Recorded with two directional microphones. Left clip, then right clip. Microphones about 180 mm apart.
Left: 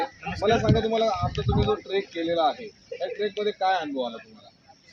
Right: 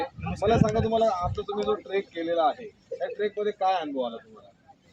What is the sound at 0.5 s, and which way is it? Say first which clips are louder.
Speech: left 1 dB; 20° right (ahead or behind).